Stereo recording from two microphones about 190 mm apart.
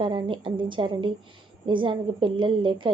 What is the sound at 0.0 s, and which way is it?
A woman's voice, 25° right (ahead or behind).